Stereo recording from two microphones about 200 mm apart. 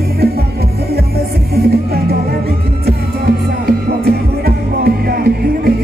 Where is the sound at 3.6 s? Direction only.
50° right (ahead or behind).